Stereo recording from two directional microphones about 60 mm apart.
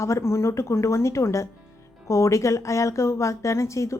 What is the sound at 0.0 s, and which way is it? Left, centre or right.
A woman's voice, left.